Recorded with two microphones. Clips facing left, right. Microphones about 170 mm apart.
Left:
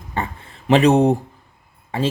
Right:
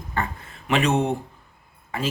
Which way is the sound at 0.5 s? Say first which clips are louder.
Left 8 dB; 35° left (ahead or behind).